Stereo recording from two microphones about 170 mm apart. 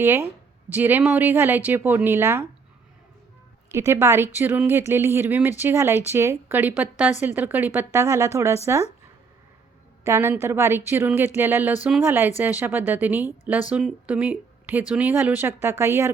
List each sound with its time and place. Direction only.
0.0 s speech: 15° right (ahead or behind)
3.7 s speech: 15° right (ahead or behind)
10.0 s speech: 15° right (ahead or behind)